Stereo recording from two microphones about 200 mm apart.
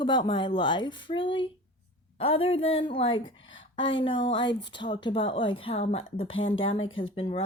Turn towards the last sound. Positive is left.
turn(degrees=30)  # may be behind; listen again after turning